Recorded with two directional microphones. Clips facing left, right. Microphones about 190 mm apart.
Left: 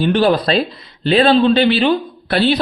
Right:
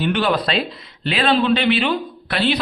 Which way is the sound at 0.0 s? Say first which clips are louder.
Left 5 dB; 35° left (ahead or behind).